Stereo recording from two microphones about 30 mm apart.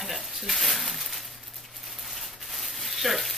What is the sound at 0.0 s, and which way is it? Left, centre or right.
Sizzle, centre.